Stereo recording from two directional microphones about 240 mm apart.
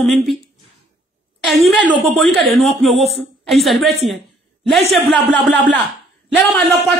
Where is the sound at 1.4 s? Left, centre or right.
Centre.